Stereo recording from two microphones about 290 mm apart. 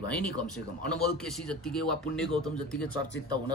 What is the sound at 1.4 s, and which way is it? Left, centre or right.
Speech, centre.